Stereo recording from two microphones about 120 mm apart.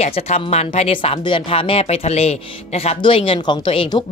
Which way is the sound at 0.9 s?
45° left (ahead or behind).